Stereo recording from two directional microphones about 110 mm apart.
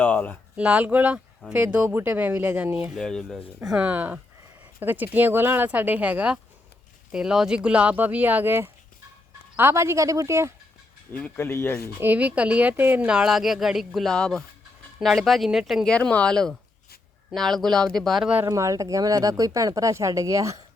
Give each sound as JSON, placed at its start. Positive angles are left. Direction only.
{"t": 0.0, "sound": "speech", "side_deg": 15}
{"t": 0.5, "sound": "speech", "side_deg": -10}
{"t": 2.9, "sound": "speech", "side_deg": 5}
{"t": 3.7, "sound": "a woman's voice", "side_deg": -10}
{"t": 11.3, "sound": "speech", "side_deg": 20}
{"t": 11.9, "sound": "speech", "side_deg": -15}
{"t": 18.4, "sound": "speech", "side_deg": -30}